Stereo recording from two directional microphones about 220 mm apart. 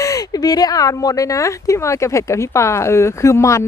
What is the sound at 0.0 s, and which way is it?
Speech, 15° left (ahead or behind).